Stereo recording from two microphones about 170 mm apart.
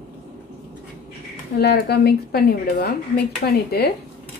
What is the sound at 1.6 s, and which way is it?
A woman's voice, 70° left (ahead or behind).